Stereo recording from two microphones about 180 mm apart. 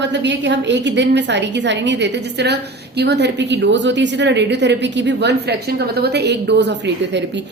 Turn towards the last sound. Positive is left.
turn(degrees=-70)  # may be behind; listen again after turning